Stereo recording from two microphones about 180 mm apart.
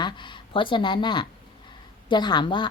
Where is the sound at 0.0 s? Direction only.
25° left (ahead or behind).